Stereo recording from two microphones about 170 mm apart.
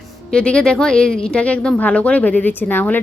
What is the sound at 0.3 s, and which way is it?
Speech, 5° left (ahead or behind).